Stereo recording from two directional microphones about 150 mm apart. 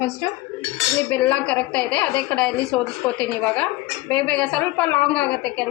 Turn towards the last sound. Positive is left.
turn(degrees=10)  # may be behind; listen again after turning